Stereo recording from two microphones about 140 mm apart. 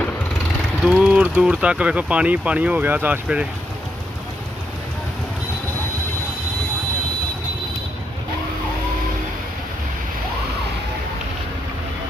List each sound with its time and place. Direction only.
0.8 s speech: 5° right (ahead or behind)